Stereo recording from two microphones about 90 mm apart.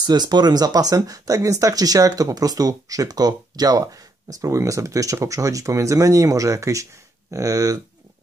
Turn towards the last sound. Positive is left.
turn(degrees=-40)  # may be behind; listen again after turning